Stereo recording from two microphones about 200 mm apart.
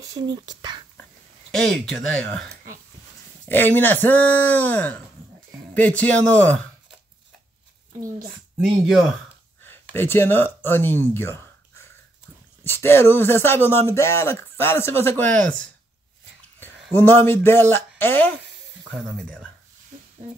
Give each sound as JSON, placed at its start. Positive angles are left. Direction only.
{"t": 0.0, "sound": "speech", "side_deg": -20}
{"t": 1.5, "sound": "speech", "side_deg": 0}
{"t": 3.4, "sound": "speech", "side_deg": 10}
{"t": 9.9, "sound": "speech", "side_deg": 10}
{"t": 12.6, "sound": "speech", "side_deg": 10}
{"t": 17.0, "sound": "speech", "side_deg": 10}
{"t": 18.9, "sound": "speech", "side_deg": 0}